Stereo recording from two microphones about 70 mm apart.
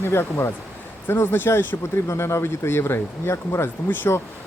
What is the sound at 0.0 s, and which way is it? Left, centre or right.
Speech, left.